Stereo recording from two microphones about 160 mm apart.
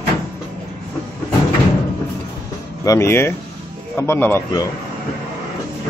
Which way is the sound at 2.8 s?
15° left (ahead or behind).